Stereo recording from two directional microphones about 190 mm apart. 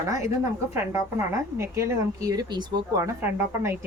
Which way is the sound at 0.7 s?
15° right (ahead or behind).